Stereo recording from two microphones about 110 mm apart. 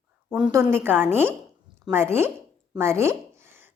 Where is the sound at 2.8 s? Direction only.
25° right (ahead or behind).